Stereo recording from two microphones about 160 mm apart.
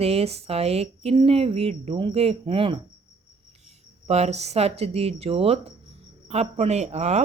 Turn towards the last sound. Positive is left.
turn(degrees=-45)  # may be behind; listen again after turning